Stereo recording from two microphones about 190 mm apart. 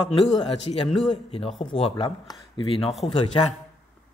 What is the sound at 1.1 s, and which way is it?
Speech, 30° left (ahead or behind).